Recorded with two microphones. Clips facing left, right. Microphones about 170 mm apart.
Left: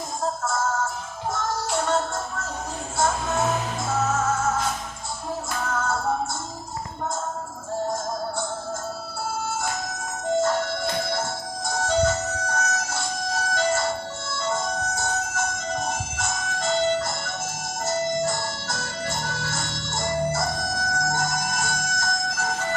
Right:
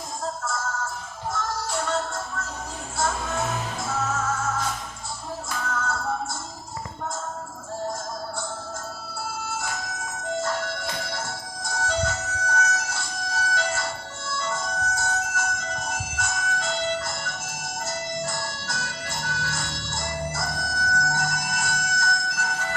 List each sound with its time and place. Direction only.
0.4 s music: 45° left (ahead or behind)
3.9 s music: 45° left (ahead or behind)
5.7 s music: 45° left (ahead or behind)
9.5 s music: 45° left (ahead or behind)